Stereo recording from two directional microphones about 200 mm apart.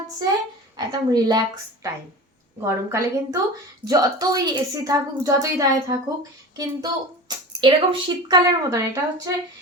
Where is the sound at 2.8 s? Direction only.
15° right (ahead or behind).